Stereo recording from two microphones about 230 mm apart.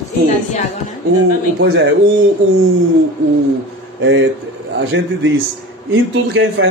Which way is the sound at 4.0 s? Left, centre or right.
Right.